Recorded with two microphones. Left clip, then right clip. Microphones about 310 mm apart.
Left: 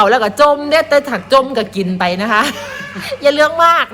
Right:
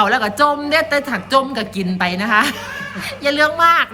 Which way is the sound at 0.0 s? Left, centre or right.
Centre.